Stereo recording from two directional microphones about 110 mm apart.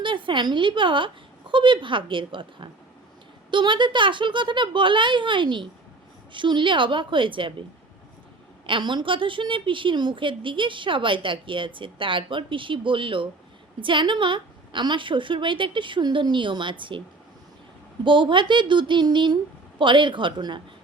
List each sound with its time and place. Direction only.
0.0 s a woman's voice: 50° right (ahead or behind)
8.6 s a woman's voice: 50° right (ahead or behind)
18.0 s a woman's voice: 50° right (ahead or behind)